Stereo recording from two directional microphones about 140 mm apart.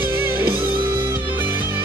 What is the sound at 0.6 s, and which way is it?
Music, 35° right (ahead or behind).